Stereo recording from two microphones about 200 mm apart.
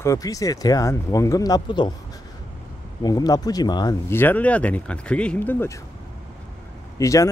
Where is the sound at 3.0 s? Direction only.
20° left (ahead or behind).